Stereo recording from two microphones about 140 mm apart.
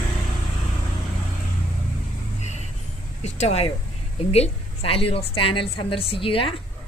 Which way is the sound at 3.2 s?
50° left (ahead or behind).